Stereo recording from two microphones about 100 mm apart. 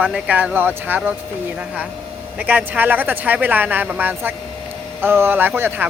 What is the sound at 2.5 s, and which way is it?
Speech, 15° right (ahead or behind).